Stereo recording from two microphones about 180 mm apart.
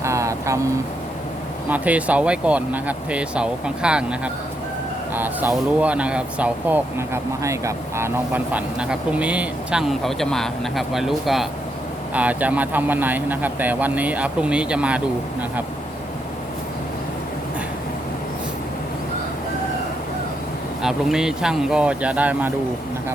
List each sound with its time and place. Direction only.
0.0 s vehicle: 15° right (ahead or behind)
1.7 s speech: 10° right (ahead or behind)
20.8 s speech: 5° right (ahead or behind)